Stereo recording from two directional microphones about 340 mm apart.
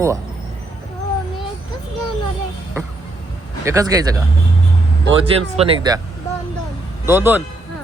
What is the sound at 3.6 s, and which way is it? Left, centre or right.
Speech, centre.